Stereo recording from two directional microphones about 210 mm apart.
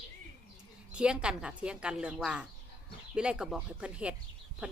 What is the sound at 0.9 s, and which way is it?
Speech, 5° right (ahead or behind).